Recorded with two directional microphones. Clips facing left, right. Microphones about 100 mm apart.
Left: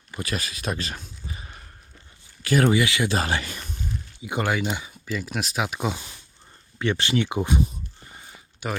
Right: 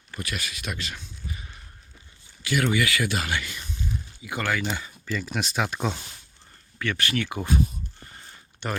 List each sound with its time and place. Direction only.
0.3 s speech: 35° left (ahead or behind)
2.4 s a sound: 40° left (ahead or behind)
2.6 s speech: 25° left (ahead or behind)
3.2 s speech: 35° left (ahead or behind)
4.2 s speech: 20° left (ahead or behind)
6.7 s speech: 25° left (ahead or behind)
8.6 s speech: 5° left (ahead or behind)